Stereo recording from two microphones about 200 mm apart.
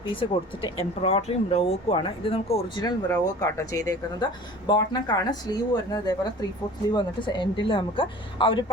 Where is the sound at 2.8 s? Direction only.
15° left (ahead or behind).